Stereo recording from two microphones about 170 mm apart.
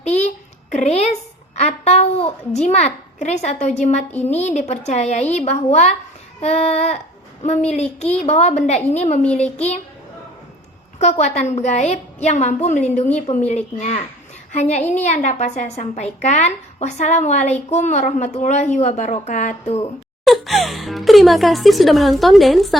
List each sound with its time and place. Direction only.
0.1 s a sound: 40° left (ahead or behind)
2.6 s a woman's voice: 40° left (ahead or behind)
11.0 s a woman's voice: 40° left (ahead or behind)
20.2 s speech: centre (ahead or behind)